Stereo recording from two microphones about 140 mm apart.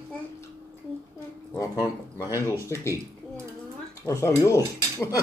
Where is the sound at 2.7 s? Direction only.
20° left (ahead or behind).